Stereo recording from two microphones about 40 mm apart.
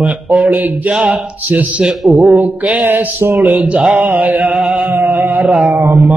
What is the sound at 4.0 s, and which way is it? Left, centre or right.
Mantra, right.